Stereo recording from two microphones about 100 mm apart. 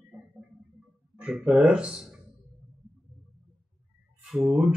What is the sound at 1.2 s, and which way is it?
Speech, 5° right (ahead or behind).